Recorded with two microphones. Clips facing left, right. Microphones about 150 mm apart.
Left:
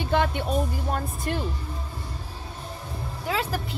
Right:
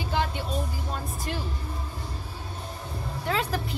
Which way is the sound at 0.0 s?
60° left (ahead or behind).